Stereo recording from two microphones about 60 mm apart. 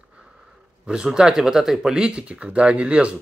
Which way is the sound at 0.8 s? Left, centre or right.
Centre.